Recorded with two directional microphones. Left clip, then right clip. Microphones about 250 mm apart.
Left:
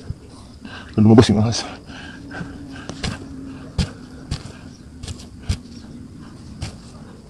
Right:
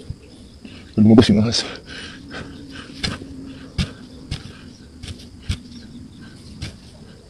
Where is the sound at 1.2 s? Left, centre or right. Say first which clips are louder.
Even; right.